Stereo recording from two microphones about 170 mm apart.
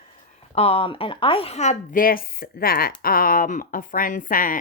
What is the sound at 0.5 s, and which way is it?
A woman's voice, 35° left (ahead or behind).